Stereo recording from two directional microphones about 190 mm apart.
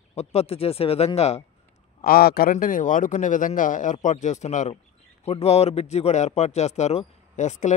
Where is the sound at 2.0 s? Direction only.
50° left (ahead or behind).